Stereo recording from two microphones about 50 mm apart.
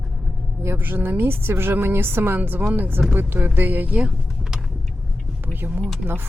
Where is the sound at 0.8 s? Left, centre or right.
Right.